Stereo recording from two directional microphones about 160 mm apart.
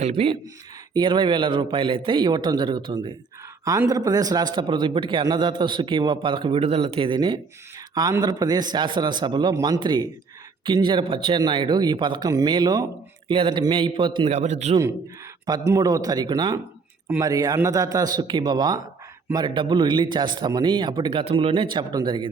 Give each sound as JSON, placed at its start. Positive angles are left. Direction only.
{"t": 0.0, "sound": "a man's voice", "side_deg": -40}
{"t": 3.6, "sound": "a man's voice", "side_deg": -20}
{"t": 14.3, "sound": "a man's voice", "side_deg": -45}
{"t": 15.4, "sound": "a man's voice", "side_deg": -20}